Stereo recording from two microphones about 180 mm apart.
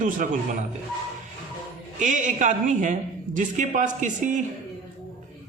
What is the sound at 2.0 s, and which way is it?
A man's voice, 45° right (ahead or behind).